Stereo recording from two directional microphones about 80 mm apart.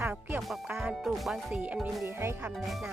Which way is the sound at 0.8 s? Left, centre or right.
Centre.